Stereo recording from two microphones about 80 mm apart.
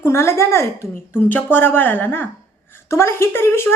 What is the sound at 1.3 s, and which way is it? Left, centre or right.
Speech, left.